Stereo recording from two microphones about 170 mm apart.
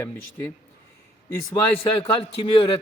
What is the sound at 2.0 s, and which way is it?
Speech, 30° left (ahead or behind).